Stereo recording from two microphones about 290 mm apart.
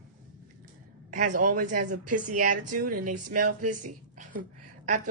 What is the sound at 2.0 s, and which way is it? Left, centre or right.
Speech, right.